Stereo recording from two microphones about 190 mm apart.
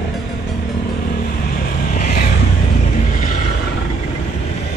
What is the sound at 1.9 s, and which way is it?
Vehicle, 45° left (ahead or behind).